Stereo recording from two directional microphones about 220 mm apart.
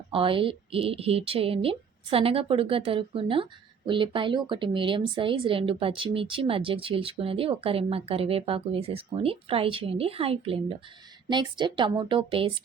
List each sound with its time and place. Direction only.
0.1 s a woman's voice: 25° right (ahead or behind)